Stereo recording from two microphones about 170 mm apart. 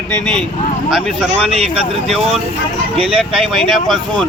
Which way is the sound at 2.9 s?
35° right (ahead or behind).